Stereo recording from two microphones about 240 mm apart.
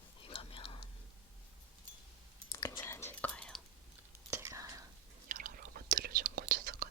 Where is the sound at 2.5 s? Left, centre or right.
Centre.